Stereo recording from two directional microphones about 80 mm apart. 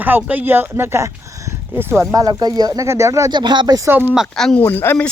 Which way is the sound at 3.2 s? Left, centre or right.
Right.